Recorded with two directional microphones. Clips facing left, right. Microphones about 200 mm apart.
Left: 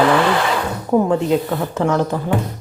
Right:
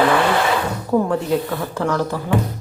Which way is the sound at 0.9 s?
20° left (ahead or behind).